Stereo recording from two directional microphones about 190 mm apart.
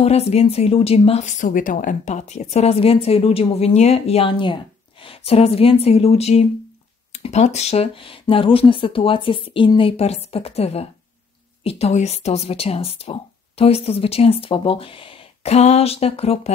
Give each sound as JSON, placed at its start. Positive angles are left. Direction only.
{"t": 0.0, "sound": "speech", "side_deg": 35}